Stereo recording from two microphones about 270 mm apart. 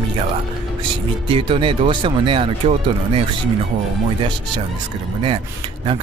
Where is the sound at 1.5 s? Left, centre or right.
Centre.